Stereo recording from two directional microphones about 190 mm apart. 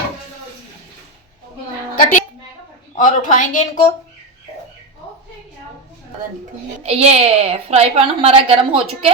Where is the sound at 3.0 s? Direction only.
40° left (ahead or behind).